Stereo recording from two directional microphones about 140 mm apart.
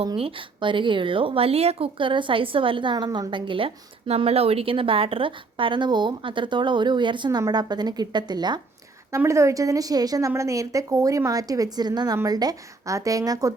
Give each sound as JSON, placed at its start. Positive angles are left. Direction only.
{"t": 0.2, "sound": "speech", "side_deg": -40}
{"t": 9.1, "sound": "a woman's voice", "side_deg": -20}